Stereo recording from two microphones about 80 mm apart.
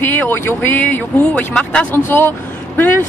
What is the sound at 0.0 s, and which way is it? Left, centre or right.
Speech, left.